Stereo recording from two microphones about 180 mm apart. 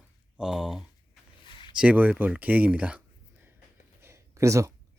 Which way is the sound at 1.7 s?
10° right (ahead or behind).